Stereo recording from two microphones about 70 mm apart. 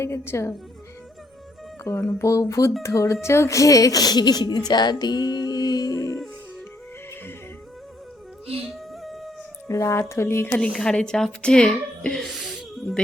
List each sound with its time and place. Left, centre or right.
0.0 s speech: left
2.0 s a woman's voice: left
4.7 s speech: left
8.7 s music: centre
9.6 s speech: left
10.5 s a woman's voice: centre
12.2 s music: centre